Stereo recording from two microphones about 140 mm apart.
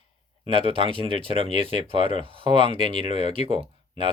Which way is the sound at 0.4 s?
40° right (ahead or behind).